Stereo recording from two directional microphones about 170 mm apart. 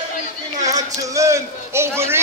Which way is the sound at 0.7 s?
20° right (ahead or behind).